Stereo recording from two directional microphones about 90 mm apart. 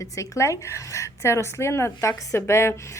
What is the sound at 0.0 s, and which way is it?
Speech, 35° left (ahead or behind).